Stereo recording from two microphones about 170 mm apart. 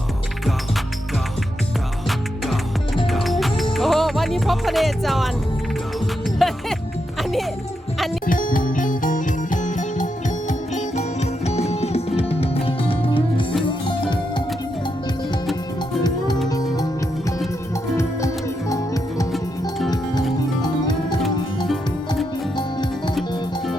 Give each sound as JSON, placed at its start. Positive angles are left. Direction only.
{"t": 2.0, "sound": "music", "side_deg": 0}
{"t": 8.3, "sound": "music", "side_deg": 55}
{"t": 11.4, "sound": "music", "side_deg": 40}
{"t": 16.0, "sound": "music", "side_deg": 25}
{"t": 20.6, "sound": "music", "side_deg": 25}
{"t": 22.5, "sound": "music", "side_deg": 25}